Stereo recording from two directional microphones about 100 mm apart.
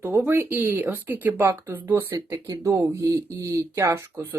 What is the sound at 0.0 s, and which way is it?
Speech, 25° right (ahead or behind).